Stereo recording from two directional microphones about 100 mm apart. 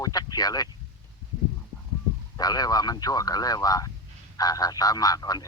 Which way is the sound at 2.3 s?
40° left (ahead or behind).